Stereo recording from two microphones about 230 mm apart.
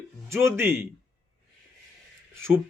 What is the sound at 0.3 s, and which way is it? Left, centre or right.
Speech, centre.